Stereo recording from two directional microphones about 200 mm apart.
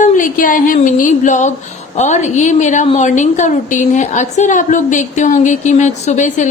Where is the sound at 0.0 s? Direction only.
40° left (ahead or behind).